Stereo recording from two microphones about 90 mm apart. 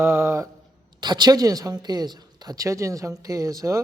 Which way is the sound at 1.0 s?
50° right (ahead or behind).